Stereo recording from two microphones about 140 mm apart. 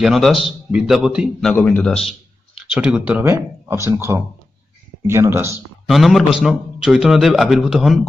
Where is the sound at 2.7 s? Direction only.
5° right (ahead or behind).